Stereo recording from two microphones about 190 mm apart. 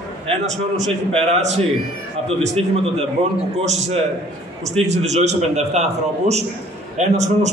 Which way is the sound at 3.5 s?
35° right (ahead or behind).